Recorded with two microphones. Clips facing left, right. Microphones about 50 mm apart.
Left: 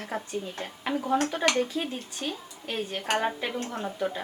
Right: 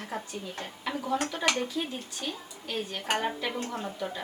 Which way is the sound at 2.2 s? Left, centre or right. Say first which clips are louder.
Left 4 dB; left.